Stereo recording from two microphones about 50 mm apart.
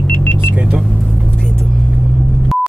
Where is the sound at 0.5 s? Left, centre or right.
Right.